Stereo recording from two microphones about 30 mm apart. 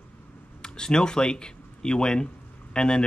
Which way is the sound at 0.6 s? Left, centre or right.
Left.